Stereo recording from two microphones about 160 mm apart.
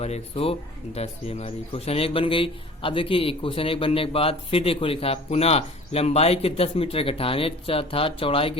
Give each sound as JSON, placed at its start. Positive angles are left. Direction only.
{"t": 0.0, "sound": "speech", "side_deg": 40}